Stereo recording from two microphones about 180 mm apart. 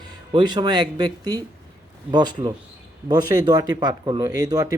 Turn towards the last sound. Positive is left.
turn(degrees=-20)  # may be behind; listen again after turning